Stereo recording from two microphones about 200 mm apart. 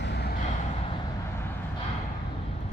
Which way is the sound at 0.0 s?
55° left (ahead or behind).